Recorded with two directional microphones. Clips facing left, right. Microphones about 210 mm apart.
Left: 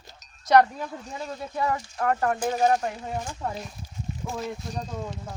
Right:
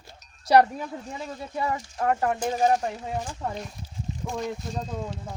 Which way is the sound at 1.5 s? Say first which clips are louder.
Left 1 dB; 10° right (ahead or behind).